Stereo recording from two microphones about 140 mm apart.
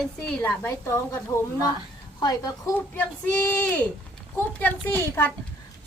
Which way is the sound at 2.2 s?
30° left (ahead or behind).